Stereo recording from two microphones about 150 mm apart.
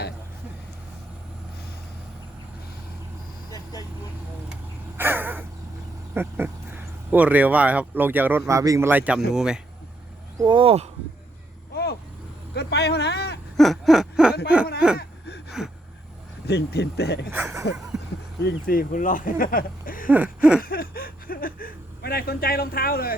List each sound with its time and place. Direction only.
3.5 s vehicle: 25° left (ahead or behind)
4.9 s a sound: 15° right (ahead or behind)
6.1 s speech: 15° right (ahead or behind)
10.3 s speech: 30° right (ahead or behind)
11.7 s vehicle: 90° left
12.5 s a man's voice: 90° left
13.6 s a sound: centre (ahead or behind)
15.6 s speech: 5° right (ahead or behind)
16.5 s a man's voice: 90° left
17.3 s speech: 15° right (ahead or behind)
18.4 s speech: 85° left
20.1 s speech: 10° right (ahead or behind)
20.6 s speech: 80° left